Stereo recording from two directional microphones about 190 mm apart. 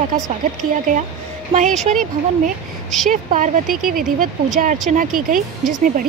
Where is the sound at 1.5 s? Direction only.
30° right (ahead or behind).